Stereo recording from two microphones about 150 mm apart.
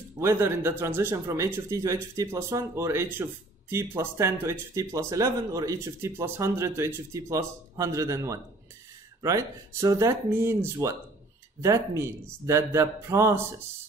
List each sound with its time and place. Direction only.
0.2 s speech: 15° right (ahead or behind)